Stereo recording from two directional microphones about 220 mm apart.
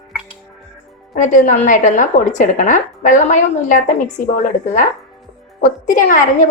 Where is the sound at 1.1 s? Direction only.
35° left (ahead or behind).